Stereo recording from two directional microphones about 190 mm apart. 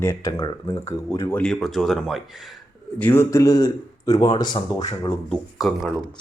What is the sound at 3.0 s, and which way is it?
Speech, 10° left (ahead or behind).